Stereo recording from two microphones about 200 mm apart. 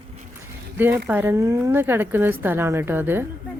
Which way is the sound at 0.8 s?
10° right (ahead or behind).